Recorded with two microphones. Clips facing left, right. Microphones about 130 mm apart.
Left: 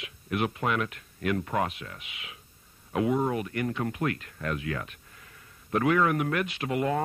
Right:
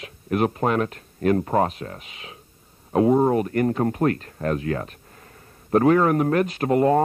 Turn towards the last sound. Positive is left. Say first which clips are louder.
# right 9 dB
turn(degrees=-40)  # may be behind; listen again after turning